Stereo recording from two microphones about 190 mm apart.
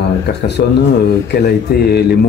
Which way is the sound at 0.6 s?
60° left (ahead or behind).